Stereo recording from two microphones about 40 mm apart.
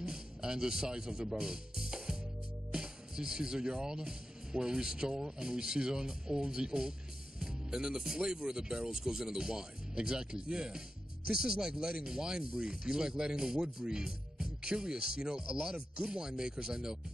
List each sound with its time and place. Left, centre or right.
0.0 s music: centre
2.7 s speech: centre